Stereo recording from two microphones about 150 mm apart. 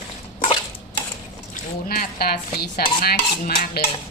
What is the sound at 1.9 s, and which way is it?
Speech, 85° left.